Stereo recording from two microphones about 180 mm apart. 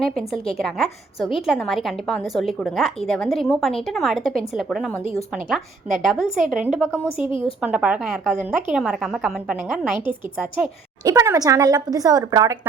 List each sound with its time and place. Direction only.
0.0 s a woman's voice: centre (ahead or behind)
11.0 s speech: 20° right (ahead or behind)